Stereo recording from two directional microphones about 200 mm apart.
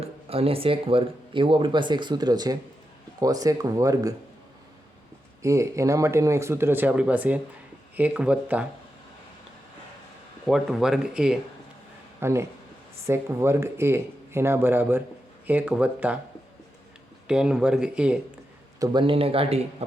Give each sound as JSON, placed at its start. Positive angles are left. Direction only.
{"t": 0.0, "sound": "speech", "side_deg": -30}
{"t": 5.4, "sound": "speech", "side_deg": -15}
{"t": 10.5, "sound": "speech", "side_deg": 0}
{"t": 17.2, "sound": "speech", "side_deg": -5}
{"t": 18.8, "sound": "speech", "side_deg": -25}